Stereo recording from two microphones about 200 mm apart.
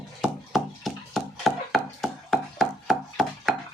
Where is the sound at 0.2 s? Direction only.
Centre (ahead or behind).